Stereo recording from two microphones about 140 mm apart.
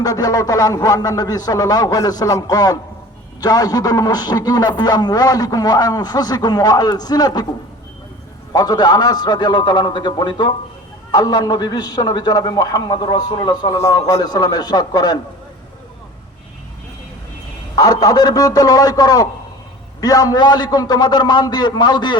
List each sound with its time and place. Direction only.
0.0 s a man's voice: 25° left (ahead or behind)
8.5 s a man's voice: 30° left (ahead or behind)
17.7 s a man's voice: 25° left (ahead or behind)